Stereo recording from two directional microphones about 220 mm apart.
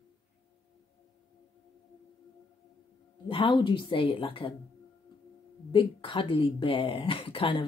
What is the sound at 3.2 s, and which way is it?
Speech, 25° left (ahead or behind).